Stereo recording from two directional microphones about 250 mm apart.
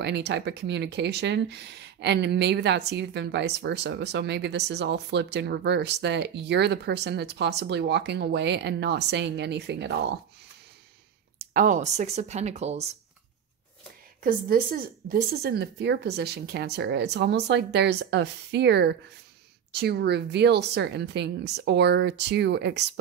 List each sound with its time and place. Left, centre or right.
0.0 s speech: right
11.3 s speech: right
14.2 s a woman's voice: right